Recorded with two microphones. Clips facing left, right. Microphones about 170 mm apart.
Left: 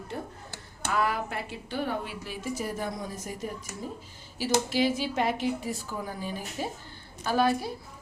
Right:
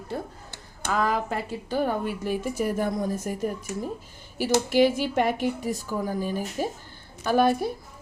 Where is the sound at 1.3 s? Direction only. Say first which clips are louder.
Right 6 dB; 40° right (ahead or behind).